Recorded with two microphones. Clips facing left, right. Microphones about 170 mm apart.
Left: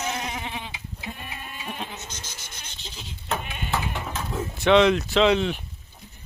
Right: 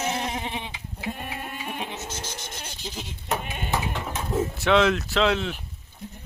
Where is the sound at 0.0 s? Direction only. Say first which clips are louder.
Right 2 dB; 30° right (ahead or behind).